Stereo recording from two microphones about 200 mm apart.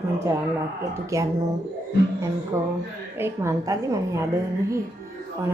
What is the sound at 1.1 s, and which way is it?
Speech, 15° right (ahead or behind).